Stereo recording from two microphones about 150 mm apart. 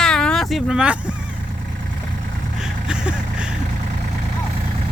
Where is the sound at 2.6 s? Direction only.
5° right (ahead or behind).